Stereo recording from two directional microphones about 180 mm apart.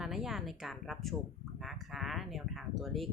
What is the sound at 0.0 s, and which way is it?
A woman's voice, centre (ahead or behind).